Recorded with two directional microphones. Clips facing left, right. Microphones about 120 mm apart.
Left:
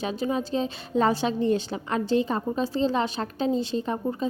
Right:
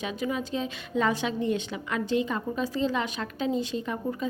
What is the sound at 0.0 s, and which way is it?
A woman's voice, 35° left (ahead or behind).